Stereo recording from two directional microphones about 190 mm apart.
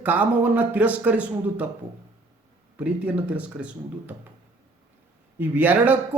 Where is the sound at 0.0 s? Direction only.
10° right (ahead or behind).